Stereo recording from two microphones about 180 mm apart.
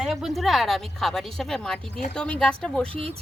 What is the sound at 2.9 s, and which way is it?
Speech, 30° right (ahead or behind).